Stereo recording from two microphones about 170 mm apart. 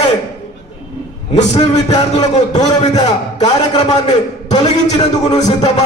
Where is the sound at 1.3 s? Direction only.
40° left (ahead or behind).